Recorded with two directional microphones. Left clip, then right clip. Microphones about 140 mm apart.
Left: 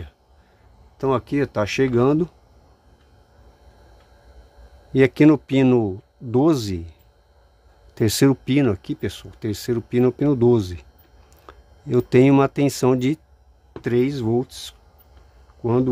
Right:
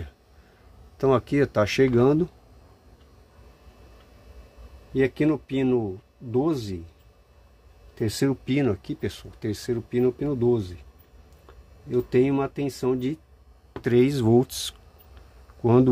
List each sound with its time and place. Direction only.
0.9 s speech: 10° left (ahead or behind)
4.9 s speech: 90° left
7.9 s speech: 90° left
11.9 s speech: 90° left
13.7 s speech: 20° left (ahead or behind)
14.2 s speech: 15° right (ahead or behind)
15.6 s speech: 5° right (ahead or behind)